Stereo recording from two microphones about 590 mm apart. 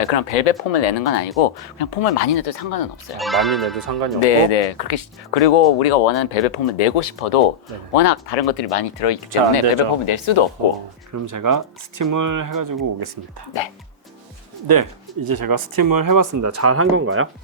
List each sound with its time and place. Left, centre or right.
0.0 s speech: left
3.2 s speech: centre
3.8 s speech: right
4.2 s speech: left
7.9 s speech: left
8.7 s speech: left
11.1 s speech: right
14.7 s speech: right